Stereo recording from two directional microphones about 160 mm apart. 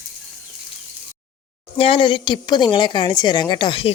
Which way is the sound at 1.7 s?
35° left (ahead or behind).